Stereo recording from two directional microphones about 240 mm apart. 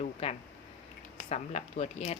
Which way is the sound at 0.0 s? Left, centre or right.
Left.